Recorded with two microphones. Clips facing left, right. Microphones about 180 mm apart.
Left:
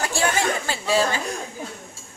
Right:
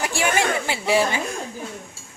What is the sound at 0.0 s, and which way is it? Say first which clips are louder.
Speech: right 1 dB; 15° right (ahead or behind).